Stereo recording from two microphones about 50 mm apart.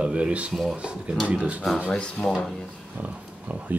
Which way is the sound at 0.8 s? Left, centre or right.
Right.